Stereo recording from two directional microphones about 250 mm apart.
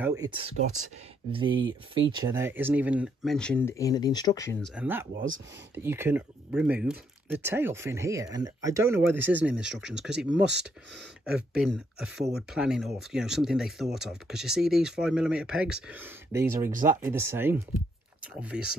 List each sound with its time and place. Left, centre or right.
0.0 s speech: centre
1.6 s speech: right
2.0 s speech: centre
5.8 s speech: centre